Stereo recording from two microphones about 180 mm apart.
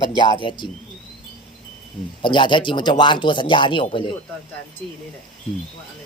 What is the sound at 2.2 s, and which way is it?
Speech, 25° left (ahead or behind).